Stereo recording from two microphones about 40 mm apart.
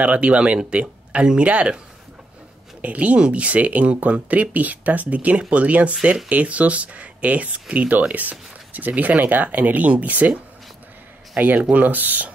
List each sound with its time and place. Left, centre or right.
0.0 s speech: right
2.8 s speech: right
3.2 s speech: right
11.3 s speech: right